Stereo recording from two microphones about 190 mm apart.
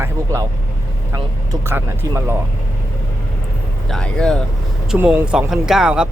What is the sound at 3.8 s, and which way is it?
Speech, 5° left (ahead or behind).